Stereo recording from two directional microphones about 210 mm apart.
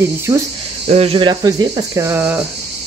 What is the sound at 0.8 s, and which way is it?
Speech, 30° right (ahead or behind).